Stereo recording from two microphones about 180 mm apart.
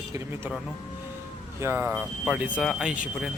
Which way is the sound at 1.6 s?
15° right (ahead or behind).